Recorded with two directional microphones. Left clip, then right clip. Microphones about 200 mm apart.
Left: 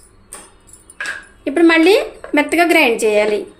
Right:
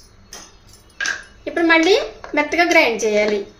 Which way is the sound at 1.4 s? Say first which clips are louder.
Left 3 dB; 45° left (ahead or behind).